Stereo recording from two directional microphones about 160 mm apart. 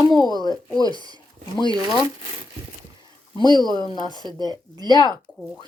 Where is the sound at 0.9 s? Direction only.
25° right (ahead or behind).